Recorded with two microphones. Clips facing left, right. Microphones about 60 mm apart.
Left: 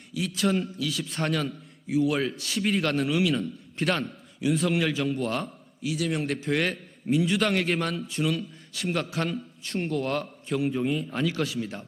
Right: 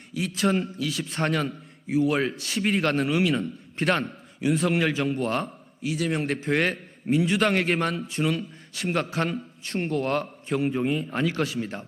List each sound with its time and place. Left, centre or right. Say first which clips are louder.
0.1 s a man's voice: right 1 dB; right
0.9 s a man's voice: right 1 dB; right
1.2 s a man's voice: right 2 dB; right
2.3 s a man's voice: right 1 dB; right
2.6 s a man's voice: right 2 dB; right